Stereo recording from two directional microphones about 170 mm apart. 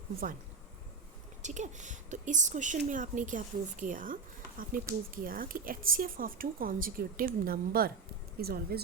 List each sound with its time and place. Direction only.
1.4 s a woman's voice: 45° right (ahead or behind); by 8.8 s 65° right (ahead or behind)